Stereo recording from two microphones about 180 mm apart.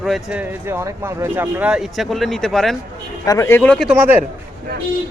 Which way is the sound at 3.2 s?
15° left (ahead or behind).